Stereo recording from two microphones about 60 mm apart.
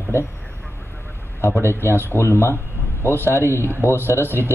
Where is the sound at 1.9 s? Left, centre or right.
Left.